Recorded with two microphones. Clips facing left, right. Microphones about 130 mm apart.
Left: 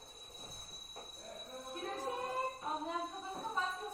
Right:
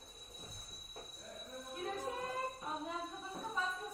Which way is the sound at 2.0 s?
25° left (ahead or behind).